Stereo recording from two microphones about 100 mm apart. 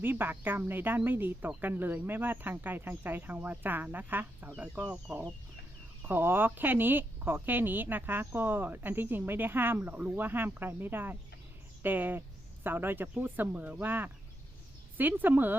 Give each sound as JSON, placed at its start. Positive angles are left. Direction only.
{"t": 0.0, "sound": "speech", "side_deg": -20}